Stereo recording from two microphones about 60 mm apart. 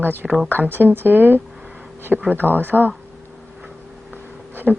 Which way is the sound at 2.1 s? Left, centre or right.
Centre.